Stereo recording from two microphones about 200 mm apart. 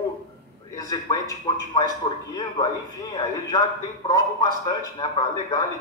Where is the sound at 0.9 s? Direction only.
20° left (ahead or behind).